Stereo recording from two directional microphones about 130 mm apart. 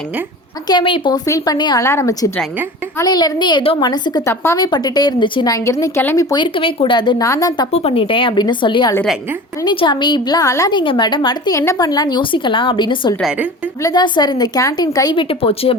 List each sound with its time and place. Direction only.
0.7 s a woman's voice: 40° left (ahead or behind)
1.8 s a woman's voice: 20° left (ahead or behind); by 5.5 s 35° left (ahead or behind)
5.5 s a woman's voice: 25° left (ahead or behind)
6.3 s a woman's voice: 40° left (ahead or behind)
7.7 s a woman's voice: 50° left (ahead or behind); by 15.1 s 30° left (ahead or behind)
15.1 s speech: 45° left (ahead or behind)